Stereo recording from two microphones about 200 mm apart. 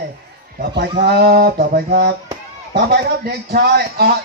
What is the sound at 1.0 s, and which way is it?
A man's voice, 50° right (ahead or behind).